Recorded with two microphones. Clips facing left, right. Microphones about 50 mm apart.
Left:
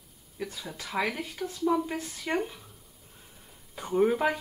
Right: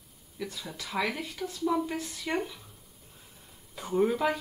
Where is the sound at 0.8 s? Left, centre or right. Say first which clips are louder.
Left 1 dB; centre.